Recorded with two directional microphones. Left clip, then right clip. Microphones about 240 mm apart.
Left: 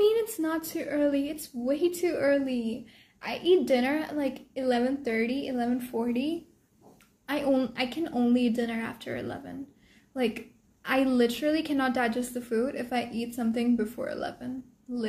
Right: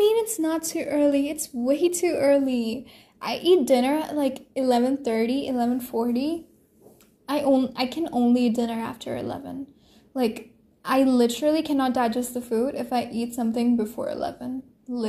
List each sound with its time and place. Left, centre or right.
0.0 s a woman's voice: centre